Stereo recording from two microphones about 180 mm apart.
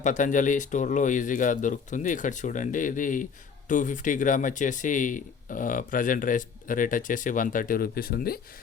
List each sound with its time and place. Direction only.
0.0 s speech: 45° left (ahead or behind)